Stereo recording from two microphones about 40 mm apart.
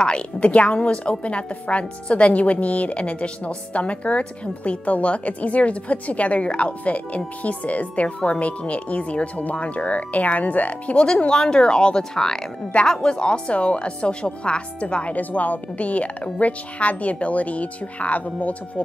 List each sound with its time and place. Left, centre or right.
0.0 s a woman's voice: left
11.2 s a woman's voice: centre
15.1 s a woman's voice: left